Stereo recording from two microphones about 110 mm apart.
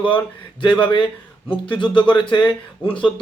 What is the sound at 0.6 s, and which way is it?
Speech, 15° left (ahead or behind).